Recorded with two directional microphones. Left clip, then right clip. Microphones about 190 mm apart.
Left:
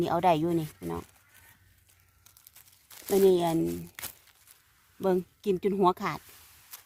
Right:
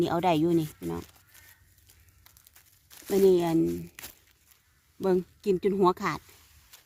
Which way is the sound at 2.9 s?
20° left (ahead or behind).